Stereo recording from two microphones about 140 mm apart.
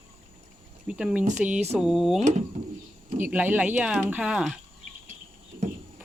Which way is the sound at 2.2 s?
60° right (ahead or behind).